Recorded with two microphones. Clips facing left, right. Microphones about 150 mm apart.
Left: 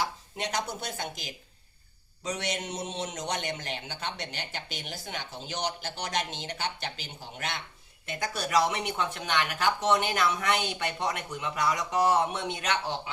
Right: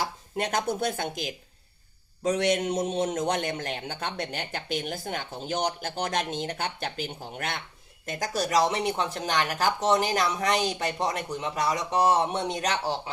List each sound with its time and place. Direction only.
0.0 s a man's voice: 50° right (ahead or behind)
8.0 s speech: 40° right (ahead or behind)